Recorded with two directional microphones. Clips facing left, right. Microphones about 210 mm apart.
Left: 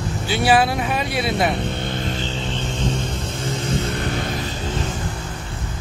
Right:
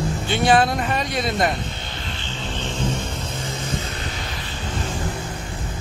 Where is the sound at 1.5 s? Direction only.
60° left (ahead or behind); by 2.3 s 45° left (ahead or behind).